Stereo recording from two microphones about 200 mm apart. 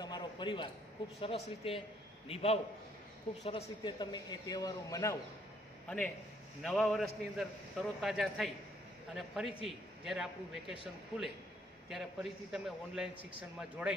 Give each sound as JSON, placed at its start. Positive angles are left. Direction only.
{"t": 0.0, "sound": "a sound", "side_deg": 20}
{"t": 1.2, "sound": "a man's voice", "side_deg": 30}
{"t": 5.9, "sound": "a man's voice", "side_deg": 5}
{"t": 11.9, "sound": "a man's voice", "side_deg": 0}